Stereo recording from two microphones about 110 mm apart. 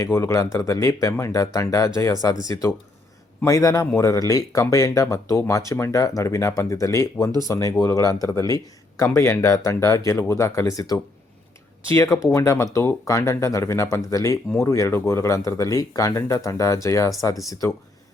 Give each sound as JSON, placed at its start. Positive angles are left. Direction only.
{"t": 0.0, "sound": "speech", "side_deg": 30}